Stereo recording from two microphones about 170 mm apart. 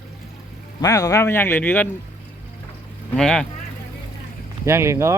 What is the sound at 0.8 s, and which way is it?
Speech, 20° left (ahead or behind).